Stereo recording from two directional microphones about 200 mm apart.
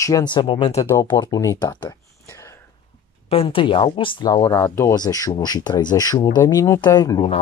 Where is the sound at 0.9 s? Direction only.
10° left (ahead or behind).